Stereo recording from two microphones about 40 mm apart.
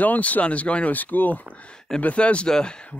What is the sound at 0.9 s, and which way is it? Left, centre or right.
Speech, left.